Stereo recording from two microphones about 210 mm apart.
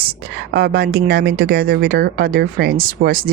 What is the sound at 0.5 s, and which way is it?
Speech, 50° right (ahead or behind).